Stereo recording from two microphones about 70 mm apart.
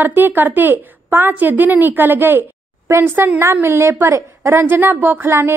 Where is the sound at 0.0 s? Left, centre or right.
Right.